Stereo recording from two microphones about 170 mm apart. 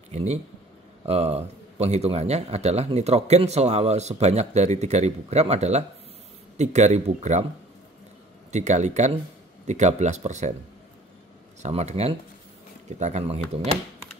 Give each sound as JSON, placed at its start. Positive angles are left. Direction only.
{"t": 0.1, "sound": "speech", "side_deg": -40}
{"t": 8.5, "sound": "speech", "side_deg": -45}
{"t": 11.6, "sound": "speech", "side_deg": -40}